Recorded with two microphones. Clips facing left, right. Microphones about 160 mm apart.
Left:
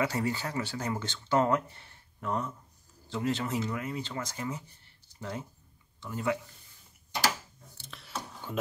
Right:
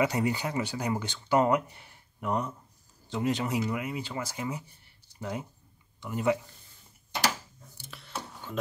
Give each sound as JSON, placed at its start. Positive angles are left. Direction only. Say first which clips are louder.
{"t": 0.0, "sound": "speech", "louder": "right 3 dB", "side_deg": -20}